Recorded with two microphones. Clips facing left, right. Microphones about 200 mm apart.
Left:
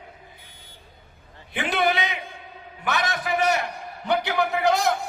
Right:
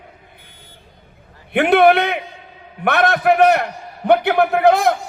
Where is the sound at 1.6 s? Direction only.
60° right (ahead or behind).